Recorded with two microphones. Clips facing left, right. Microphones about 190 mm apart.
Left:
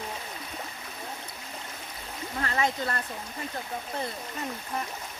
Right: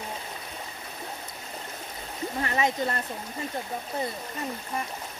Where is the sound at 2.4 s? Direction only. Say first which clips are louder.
Right 2 dB; 20° right (ahead or behind).